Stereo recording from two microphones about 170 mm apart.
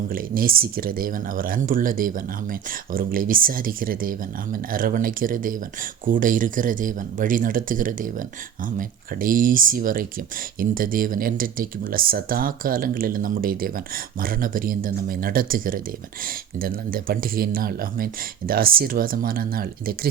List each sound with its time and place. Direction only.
0.1 s speech: 60° right (ahead or behind)